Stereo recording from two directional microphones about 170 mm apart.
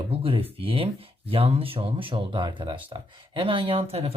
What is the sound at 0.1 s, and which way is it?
Speech, 35° right (ahead or behind).